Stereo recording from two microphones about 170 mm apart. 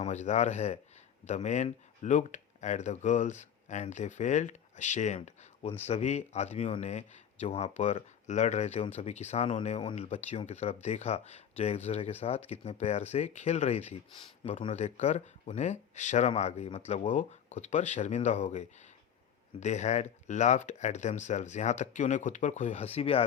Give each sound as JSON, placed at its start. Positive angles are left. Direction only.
{"t": 0.0, "sound": "speech", "side_deg": 45}